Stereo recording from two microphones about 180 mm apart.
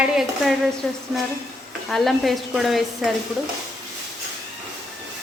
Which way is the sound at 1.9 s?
Centre (ahead or behind).